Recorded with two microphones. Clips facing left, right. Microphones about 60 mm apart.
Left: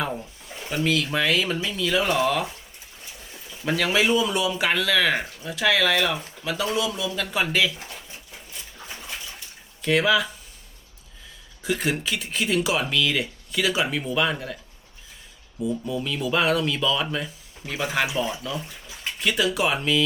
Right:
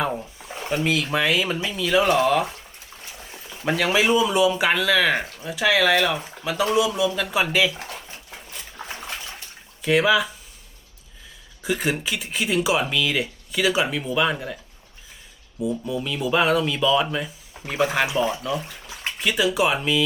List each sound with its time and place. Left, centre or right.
0.4 s a sound: right
0.7 s speech: centre
3.7 s speech: centre
8.9 s a sound: right
9.8 s speech: centre
11.6 s speech: centre
15.6 s speech: centre